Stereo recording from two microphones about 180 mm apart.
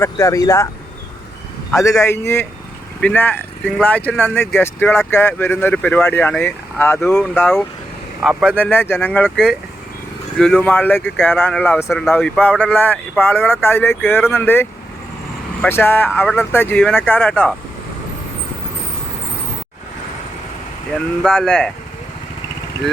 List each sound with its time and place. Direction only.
0.0 s speech: 15° left (ahead or behind)
1.7 s speech: 15° left (ahead or behind)
8.2 s speech: 5° right (ahead or behind)
8.5 s speech: 10° left (ahead or behind)
20.9 s speech: 5° left (ahead or behind)